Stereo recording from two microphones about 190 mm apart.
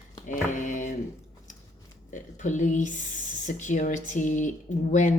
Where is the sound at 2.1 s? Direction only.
40° left (ahead or behind).